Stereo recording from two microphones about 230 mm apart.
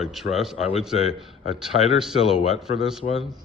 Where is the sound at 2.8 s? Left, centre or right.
Centre.